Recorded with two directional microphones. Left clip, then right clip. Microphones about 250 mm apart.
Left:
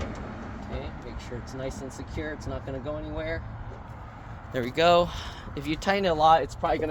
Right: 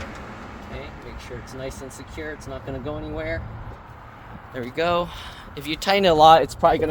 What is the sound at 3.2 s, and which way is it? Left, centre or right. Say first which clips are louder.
Speech: right 5 dB; centre.